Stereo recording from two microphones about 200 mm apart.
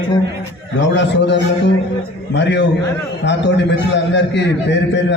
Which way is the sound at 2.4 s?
60° left (ahead or behind).